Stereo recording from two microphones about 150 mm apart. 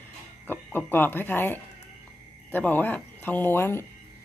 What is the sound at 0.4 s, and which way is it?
Speech, 15° left (ahead or behind).